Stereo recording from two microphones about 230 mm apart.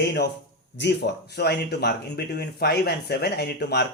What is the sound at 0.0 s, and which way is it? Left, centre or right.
Speech, left.